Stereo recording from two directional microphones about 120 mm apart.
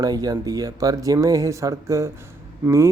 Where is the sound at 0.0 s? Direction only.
30° right (ahead or behind).